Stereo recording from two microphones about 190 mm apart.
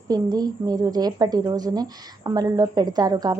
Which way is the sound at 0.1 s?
20° right (ahead or behind).